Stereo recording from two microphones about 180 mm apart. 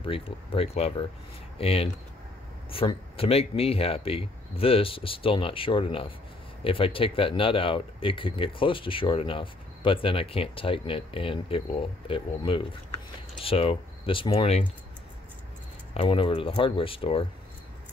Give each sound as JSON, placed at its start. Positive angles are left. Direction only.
{"t": 0.0, "sound": "speech", "side_deg": 30}
{"t": 15.9, "sound": "speech", "side_deg": 30}